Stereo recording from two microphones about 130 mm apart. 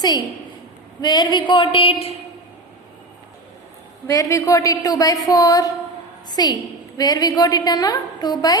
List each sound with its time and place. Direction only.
1.0 s a woman's voice: 35° left (ahead or behind)
4.0 s a woman's voice: 25° left (ahead or behind)